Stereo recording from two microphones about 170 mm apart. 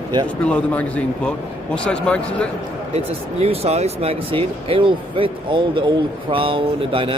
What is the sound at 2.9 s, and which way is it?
Speech, 35° right (ahead or behind).